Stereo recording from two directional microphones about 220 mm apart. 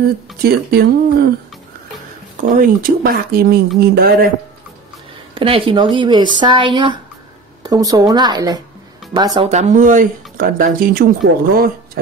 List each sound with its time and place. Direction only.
0.4 s speech: 45° right (ahead or behind)
2.4 s speech: 40° right (ahead or behind)
5.3 s speech: 25° right (ahead or behind)
9.4 s speech: 30° right (ahead or behind)